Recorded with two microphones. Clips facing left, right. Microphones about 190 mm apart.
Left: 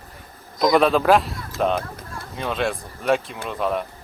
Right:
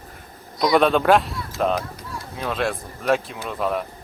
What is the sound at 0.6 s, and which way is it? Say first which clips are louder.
Speech: even; centre (ahead or behind).